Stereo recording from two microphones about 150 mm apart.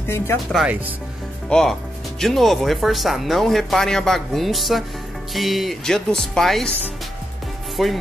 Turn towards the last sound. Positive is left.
turn(degrees=0)  # may be behind; listen again after turning